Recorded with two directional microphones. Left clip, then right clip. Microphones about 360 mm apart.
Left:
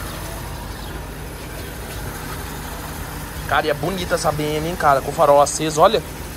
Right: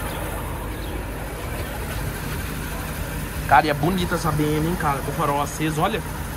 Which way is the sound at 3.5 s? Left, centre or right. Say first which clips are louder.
Right 2 dB; centre.